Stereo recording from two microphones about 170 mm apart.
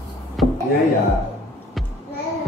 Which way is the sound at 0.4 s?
Centre (ahead or behind).